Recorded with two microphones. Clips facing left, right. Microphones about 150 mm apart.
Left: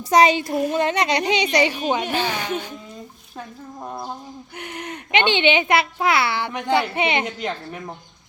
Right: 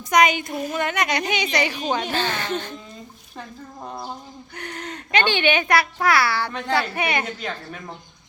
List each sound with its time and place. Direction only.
0.1 s a sound: 30° left (ahead or behind)
0.4 s speech: 5° left (ahead or behind)
0.7 s a child's voice: 30° left (ahead or behind)
1.9 s a child's voice: 10° left (ahead or behind)